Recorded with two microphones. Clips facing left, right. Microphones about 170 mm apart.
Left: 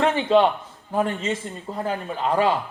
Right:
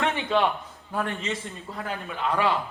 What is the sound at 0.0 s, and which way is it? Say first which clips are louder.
A man's voice: left 6 dB; 35° left (ahead or behind).